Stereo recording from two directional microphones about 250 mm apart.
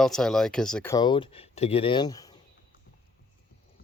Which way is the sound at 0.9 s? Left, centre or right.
Centre.